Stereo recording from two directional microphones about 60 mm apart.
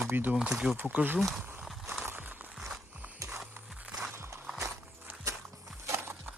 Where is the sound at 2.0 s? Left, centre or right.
Right.